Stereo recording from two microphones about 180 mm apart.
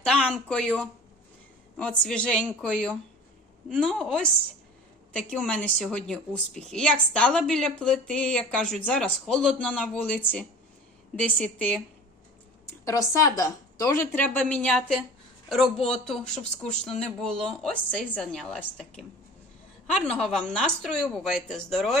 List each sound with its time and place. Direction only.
0.0 s speech: 5° left (ahead or behind)
1.8 s a woman's voice: 5° left (ahead or behind)
12.6 s a woman's voice: 15° left (ahead or behind); by 21.9 s centre (ahead or behind)